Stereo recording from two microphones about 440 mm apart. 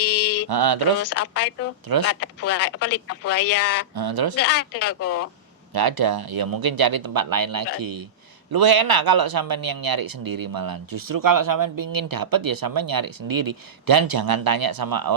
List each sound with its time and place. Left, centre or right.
0.0 s mantra: left
0.4 s mantra: right
1.0 s speech: left
3.9 s speech: right
4.4 s speech: left
5.7 s speech: right